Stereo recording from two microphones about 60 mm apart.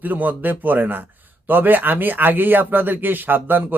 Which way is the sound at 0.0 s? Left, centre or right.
Right.